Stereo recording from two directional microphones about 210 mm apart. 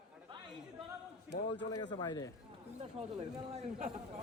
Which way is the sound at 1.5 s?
20° left (ahead or behind).